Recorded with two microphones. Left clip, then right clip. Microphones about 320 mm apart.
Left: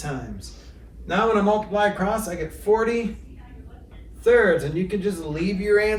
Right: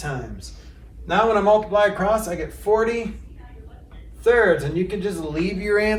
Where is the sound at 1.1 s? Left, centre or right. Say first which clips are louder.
Right 4 dB; centre.